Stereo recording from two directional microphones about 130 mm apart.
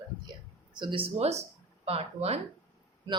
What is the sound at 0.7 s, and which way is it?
Speech, 40° right (ahead or behind).